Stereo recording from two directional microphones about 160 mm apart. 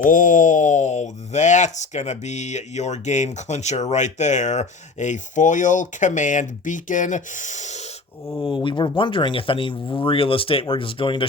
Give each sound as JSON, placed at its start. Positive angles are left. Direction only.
{"t": 0.0, "sound": "speech", "side_deg": 55}
{"t": 8.6, "sound": "speech", "side_deg": 30}